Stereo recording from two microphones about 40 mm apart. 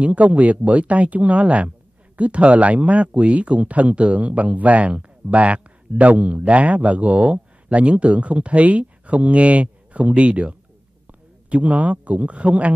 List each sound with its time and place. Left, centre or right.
0.0 s a man's voice: right